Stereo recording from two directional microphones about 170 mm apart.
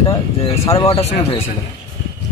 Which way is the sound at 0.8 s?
35° left (ahead or behind).